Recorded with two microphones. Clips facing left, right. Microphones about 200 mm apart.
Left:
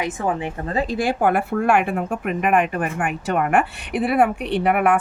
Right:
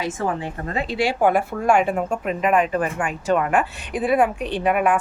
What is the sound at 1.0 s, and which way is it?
Speech, 60° left (ahead or behind).